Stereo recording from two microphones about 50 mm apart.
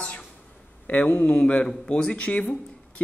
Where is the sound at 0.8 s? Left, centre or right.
Left.